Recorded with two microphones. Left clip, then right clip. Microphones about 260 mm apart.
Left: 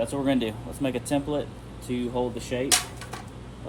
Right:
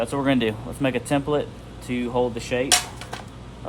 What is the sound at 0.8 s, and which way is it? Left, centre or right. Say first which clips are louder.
Speech: right 4 dB; right.